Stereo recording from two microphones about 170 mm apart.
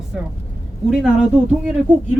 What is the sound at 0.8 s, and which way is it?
Speech, 5° right (ahead or behind).